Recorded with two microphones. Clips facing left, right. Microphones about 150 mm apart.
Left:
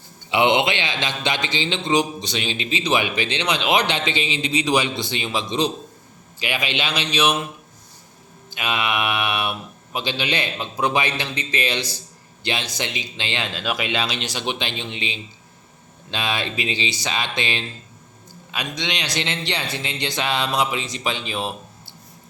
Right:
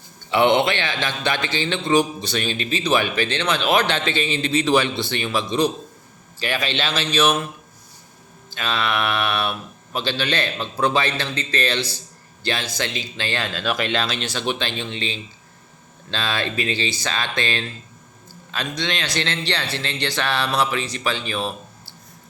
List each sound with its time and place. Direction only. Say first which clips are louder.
0.3 s a man's voice: right 1 dB; 15° left (ahead or behind)
8.4 s a man's voice: even; 15° left (ahead or behind)